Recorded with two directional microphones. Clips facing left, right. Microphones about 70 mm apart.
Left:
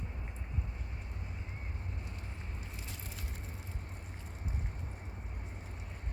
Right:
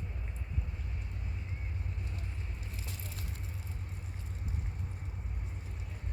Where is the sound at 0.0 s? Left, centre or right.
Left.